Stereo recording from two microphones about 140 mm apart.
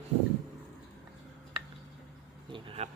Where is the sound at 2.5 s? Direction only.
45° right (ahead or behind).